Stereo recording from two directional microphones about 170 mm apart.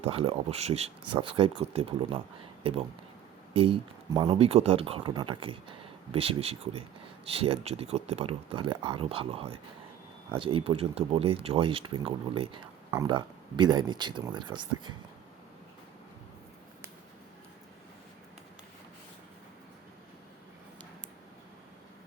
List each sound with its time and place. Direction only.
0.0 s speech: 35° right (ahead or behind)
3.5 s speech: 30° right (ahead or behind)